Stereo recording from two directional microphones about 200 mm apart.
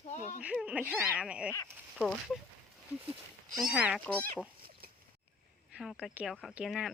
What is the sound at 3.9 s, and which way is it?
Speech, 5° left (ahead or behind).